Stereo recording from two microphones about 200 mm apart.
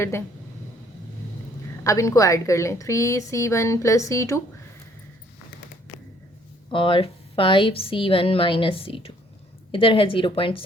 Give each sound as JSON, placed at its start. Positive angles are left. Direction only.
{"t": 1.8, "sound": "a woman's voice", "side_deg": 15}
{"t": 6.7, "sound": "a woman's voice", "side_deg": 25}